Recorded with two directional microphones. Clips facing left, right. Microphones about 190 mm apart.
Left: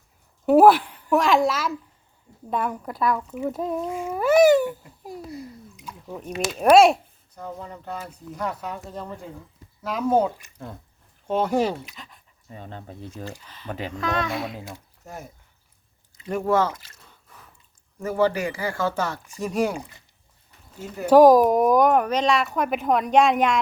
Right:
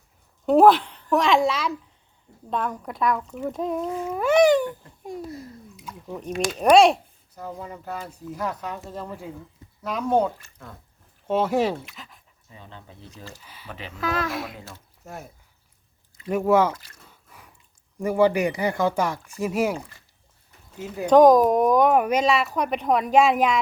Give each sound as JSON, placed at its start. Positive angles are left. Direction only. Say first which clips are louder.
{"t": 0.4, "sound": "a woman's voice", "louder": "left 1 dB", "side_deg": 5}
{"t": 11.9, "sound": "dog", "louder": "even", "side_deg": 0}
{"t": 12.5, "sound": "speech", "louder": "left 6 dB", "side_deg": 45}
{"t": 13.4, "sound": "speech", "louder": "even", "side_deg": -10}
{"t": 13.7, "sound": "speech", "louder": "left 7 dB", "side_deg": 45}
{"t": 13.9, "sound": "speech", "louder": "even", "side_deg": -5}
{"t": 16.3, "sound": "speech", "louder": "right 2 dB", "side_deg": -10}
{"t": 18.0, "sound": "speech", "louder": "right 3 dB", "side_deg": -15}
{"t": 20.8, "sound": "speech", "louder": "right 1 dB", "side_deg": -15}
{"t": 21.1, "sound": "speech", "louder": "left 1 dB", "side_deg": 5}